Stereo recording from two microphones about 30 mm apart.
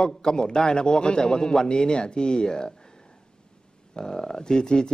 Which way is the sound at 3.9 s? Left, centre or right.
Left.